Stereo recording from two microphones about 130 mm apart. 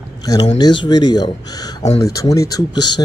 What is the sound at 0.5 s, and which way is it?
Speech, 35° left (ahead or behind).